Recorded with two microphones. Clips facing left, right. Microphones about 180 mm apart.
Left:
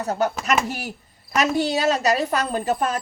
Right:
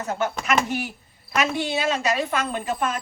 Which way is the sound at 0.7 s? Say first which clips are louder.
Right 3 dB; 40° left (ahead or behind).